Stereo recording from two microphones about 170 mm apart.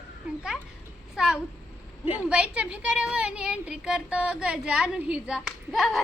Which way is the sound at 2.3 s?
5° right (ahead or behind).